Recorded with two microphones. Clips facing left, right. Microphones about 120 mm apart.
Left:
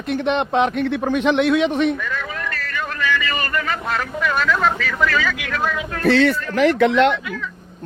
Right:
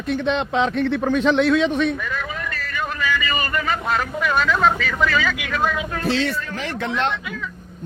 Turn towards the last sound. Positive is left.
turn(degrees=90)